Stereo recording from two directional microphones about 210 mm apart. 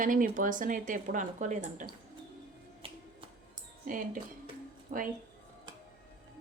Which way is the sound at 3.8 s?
40° right (ahead or behind).